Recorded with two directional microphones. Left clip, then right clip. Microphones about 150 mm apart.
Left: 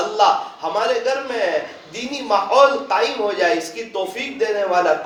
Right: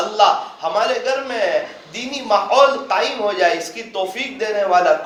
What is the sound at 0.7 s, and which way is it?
Speech, 45° left (ahead or behind).